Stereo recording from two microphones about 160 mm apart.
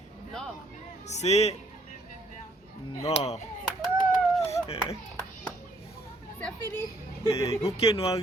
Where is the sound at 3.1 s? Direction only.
40° left (ahead or behind).